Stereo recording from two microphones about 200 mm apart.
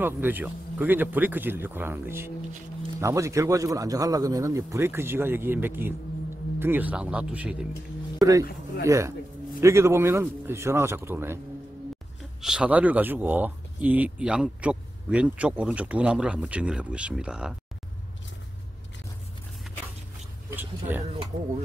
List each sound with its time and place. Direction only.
0.0 s a man's voice: 10° right (ahead or behind)
20.9 s a man's voice: 10° right (ahead or behind)